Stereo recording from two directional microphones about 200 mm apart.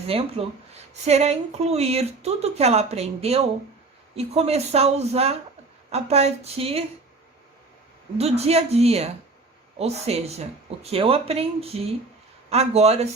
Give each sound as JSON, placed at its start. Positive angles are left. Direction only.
{"t": 0.1, "sound": "speech", "side_deg": -30}
{"t": 8.2, "sound": "speech", "side_deg": -30}